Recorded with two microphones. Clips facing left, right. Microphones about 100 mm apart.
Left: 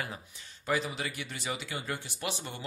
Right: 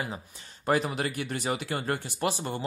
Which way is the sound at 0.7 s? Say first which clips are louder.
Right 5 dB; 50° right (ahead or behind).